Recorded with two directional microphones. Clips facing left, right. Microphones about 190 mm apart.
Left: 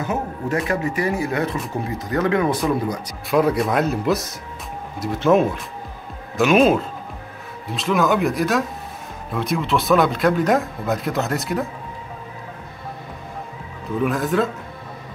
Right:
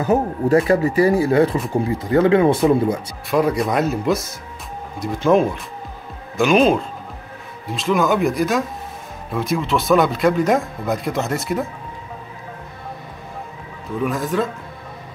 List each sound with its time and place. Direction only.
0.0 s speech: 35° right (ahead or behind)
3.3 s speech: centre (ahead or behind)
5.3 s speech: centre (ahead or behind)
14.0 s speech: centre (ahead or behind)